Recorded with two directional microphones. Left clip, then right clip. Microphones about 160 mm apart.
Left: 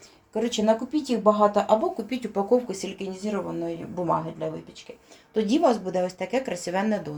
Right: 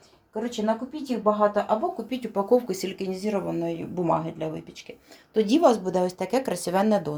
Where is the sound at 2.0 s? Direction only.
5° left (ahead or behind).